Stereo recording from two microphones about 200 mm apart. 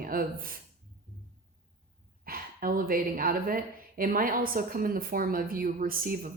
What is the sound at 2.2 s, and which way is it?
A woman's voice, 45° right (ahead or behind).